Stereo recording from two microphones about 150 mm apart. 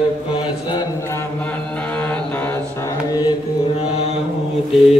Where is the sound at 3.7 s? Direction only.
45° left (ahead or behind).